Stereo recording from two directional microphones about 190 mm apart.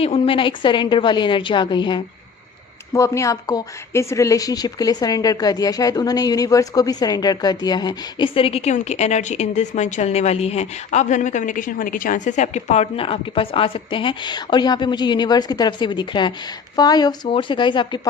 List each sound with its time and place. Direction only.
0.0 s a woman's voice: 30° left (ahead or behind)